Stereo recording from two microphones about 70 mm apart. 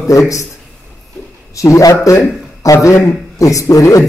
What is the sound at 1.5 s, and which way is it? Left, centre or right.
A man's voice, left.